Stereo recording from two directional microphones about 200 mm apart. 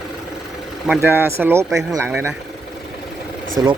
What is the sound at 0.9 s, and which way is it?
Speech, 10° right (ahead or behind).